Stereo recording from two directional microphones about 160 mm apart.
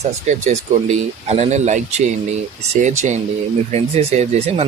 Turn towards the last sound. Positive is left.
turn(degrees=-40)  # may be behind; listen again after turning